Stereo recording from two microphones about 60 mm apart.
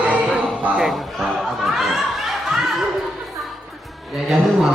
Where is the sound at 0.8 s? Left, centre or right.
Centre.